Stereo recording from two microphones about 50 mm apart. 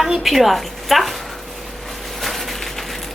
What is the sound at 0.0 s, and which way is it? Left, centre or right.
A woman's voice, centre.